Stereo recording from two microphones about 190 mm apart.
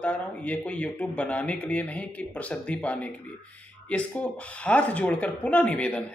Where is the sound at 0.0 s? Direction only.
5° left (ahead or behind).